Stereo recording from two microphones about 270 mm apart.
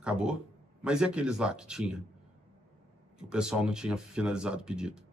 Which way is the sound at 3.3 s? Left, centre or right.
Centre.